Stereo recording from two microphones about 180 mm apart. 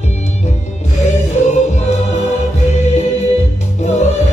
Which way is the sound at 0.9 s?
40° left (ahead or behind).